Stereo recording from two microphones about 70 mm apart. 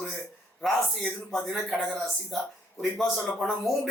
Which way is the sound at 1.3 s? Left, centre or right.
Centre.